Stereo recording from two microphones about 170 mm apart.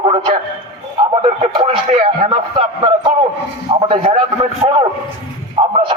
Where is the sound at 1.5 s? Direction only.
35° right (ahead or behind).